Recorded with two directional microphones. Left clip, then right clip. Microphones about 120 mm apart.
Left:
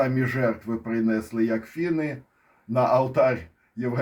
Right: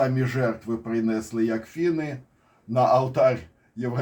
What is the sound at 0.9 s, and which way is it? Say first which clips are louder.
Speech: left 1 dB; 30° left (ahead or behind).